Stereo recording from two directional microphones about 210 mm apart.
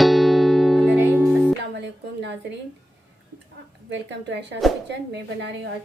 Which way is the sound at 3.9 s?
55° right (ahead or behind).